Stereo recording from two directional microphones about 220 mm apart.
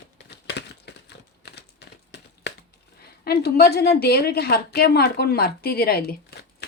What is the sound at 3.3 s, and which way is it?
A woman's voice, 45° left (ahead or behind).